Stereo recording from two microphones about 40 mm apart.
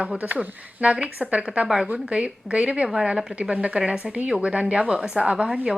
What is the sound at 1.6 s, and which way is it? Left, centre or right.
Speech, centre.